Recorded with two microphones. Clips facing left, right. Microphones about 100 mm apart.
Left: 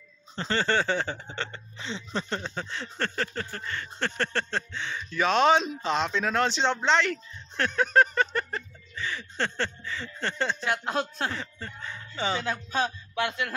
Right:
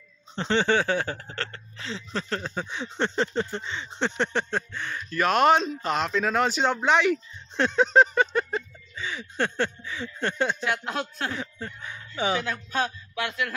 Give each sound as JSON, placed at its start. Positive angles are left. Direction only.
{"t": 0.4, "sound": "speech", "side_deg": -15}
{"t": 10.9, "sound": "speech", "side_deg": 30}
{"t": 11.3, "sound": "speech", "side_deg": -10}
{"t": 12.4, "sound": "speech", "side_deg": 25}